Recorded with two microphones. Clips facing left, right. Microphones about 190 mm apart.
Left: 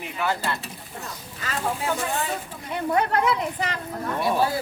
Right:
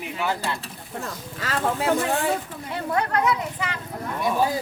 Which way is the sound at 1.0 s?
85° right.